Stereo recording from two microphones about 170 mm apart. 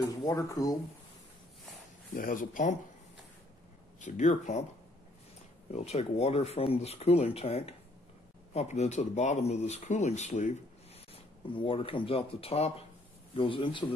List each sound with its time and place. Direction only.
0.1 s speech: 20° left (ahead or behind)
2.1 s speech: 55° left (ahead or behind)
4.0 s speech: 45° left (ahead or behind)
5.7 s speech: 40° left (ahead or behind)
11.5 s speech: 30° left (ahead or behind)